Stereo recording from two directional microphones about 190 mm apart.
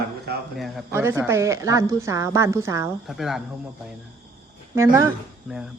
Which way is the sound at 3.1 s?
Centre (ahead or behind).